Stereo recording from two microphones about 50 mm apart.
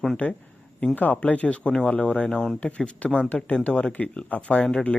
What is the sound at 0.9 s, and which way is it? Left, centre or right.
Speech, left.